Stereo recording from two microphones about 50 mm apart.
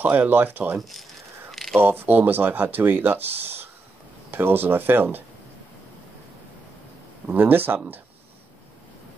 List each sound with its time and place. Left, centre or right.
0.0 s speech: right
0.7 s speech: centre
1.5 s a sound: centre
1.8 s speech: right
7.2 s speech: right